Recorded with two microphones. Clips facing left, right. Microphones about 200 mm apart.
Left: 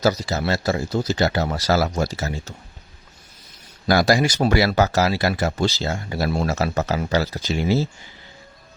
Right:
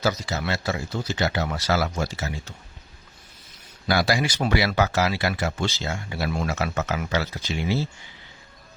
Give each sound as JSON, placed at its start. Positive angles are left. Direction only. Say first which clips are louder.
{"t": 0.0, "sound": "speech", "louder": "left 5 dB", "side_deg": 35}
{"t": 3.8, "sound": "speech", "louder": "left 5 dB", "side_deg": 45}